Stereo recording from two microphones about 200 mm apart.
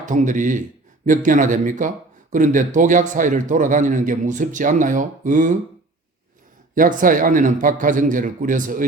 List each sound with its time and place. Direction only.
0.0 s a man's voice: 40° right (ahead or behind)
6.7 s a man's voice: 45° right (ahead or behind)